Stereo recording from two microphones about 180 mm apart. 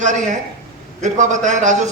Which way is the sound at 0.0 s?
45° right (ahead or behind).